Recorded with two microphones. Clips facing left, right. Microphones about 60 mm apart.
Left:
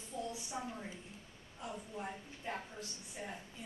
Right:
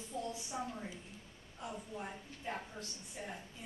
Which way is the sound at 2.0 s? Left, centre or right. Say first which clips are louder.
Even; centre.